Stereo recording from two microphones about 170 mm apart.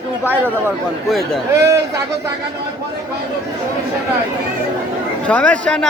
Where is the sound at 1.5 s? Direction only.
75° right (ahead or behind).